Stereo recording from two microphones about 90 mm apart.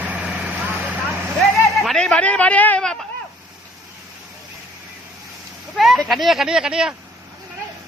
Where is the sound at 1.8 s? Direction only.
5° left (ahead or behind).